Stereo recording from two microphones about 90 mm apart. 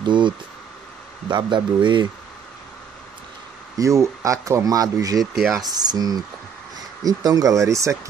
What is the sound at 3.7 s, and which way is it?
Speech, 35° right (ahead or behind).